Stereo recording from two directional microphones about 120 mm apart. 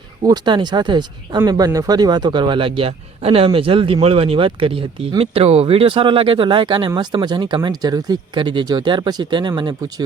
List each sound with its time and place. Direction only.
0.2 s a man's voice: 35° right (ahead or behind)